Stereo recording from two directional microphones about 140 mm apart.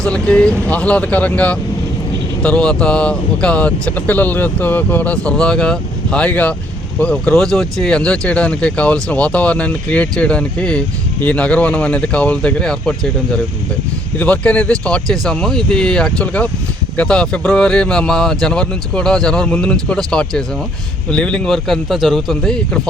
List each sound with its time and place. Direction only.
0.0 s speech: 10° left (ahead or behind)